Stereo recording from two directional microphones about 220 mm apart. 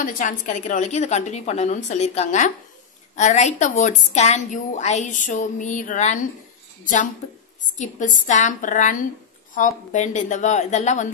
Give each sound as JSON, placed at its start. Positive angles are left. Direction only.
{"t": 0.0, "sound": "a woman's voice", "side_deg": 35}